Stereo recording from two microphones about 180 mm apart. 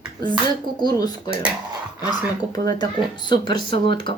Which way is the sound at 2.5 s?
20° left (ahead or behind).